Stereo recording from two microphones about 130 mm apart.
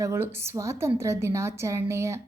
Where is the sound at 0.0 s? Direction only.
20° right (ahead or behind).